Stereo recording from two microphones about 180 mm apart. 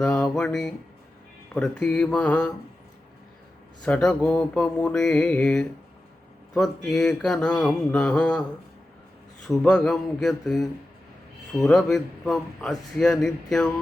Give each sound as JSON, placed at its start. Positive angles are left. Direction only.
{"t": 0.0, "sound": "mantra", "side_deg": 5}
{"t": 3.8, "sound": "mantra", "side_deg": 5}